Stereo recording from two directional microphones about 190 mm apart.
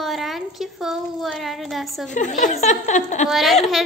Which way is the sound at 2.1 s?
40° left (ahead or behind).